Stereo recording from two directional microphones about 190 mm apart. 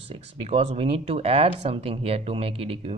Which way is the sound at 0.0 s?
30° right (ahead or behind).